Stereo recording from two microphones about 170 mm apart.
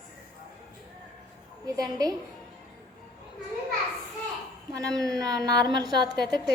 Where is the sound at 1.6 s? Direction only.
20° right (ahead or behind).